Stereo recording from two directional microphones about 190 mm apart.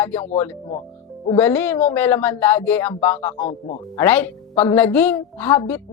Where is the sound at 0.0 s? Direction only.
10° left (ahead or behind).